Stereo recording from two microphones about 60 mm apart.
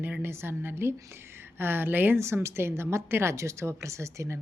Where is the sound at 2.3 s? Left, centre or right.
Right.